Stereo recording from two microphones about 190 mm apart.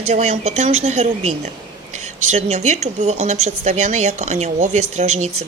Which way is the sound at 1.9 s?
40° right (ahead or behind).